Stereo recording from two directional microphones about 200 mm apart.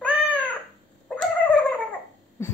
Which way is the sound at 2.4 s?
15° left (ahead or behind).